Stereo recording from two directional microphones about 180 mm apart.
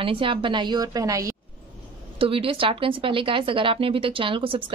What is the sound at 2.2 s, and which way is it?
Speech, 30° right (ahead or behind).